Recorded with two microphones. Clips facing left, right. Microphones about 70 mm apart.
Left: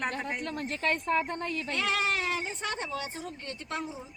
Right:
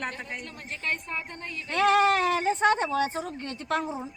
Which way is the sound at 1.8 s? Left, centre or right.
Right.